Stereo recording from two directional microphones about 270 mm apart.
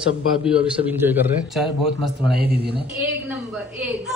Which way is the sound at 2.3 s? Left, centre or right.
Right.